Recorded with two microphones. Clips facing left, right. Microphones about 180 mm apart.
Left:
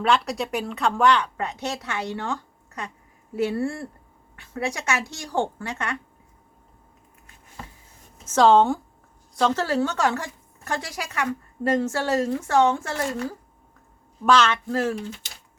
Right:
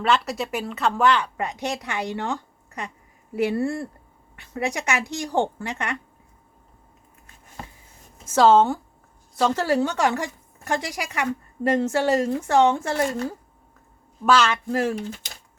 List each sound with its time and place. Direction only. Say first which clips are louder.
0.0 s a woman's voice: even; centre (ahead or behind); by 6.0 s 15° right (ahead or behind)
8.2 s a woman's voice: even; 5° right (ahead or behind)
14.3 s a woman's voice: even; 10° right (ahead or behind)